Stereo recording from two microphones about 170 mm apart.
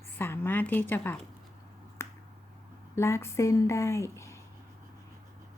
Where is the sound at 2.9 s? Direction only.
15° left (ahead or behind).